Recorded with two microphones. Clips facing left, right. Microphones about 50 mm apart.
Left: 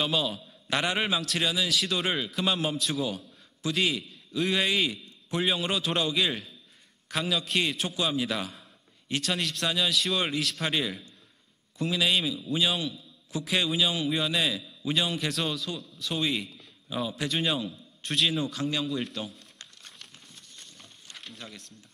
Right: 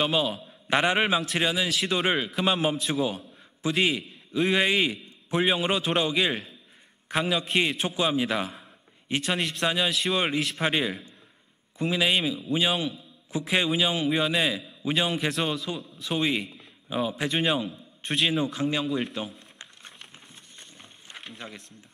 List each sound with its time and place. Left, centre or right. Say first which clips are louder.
0.0 s a man's voice: right 3 dB; right
3.3 s a sound: right 3 dB; right
4.1 s a man's voice: right 4 dB; right
18.9 s a man's voice: right 3 dB; centre
19.6 s crumpling: right 3 dB; right
20.5 s a sound: right 2 dB; right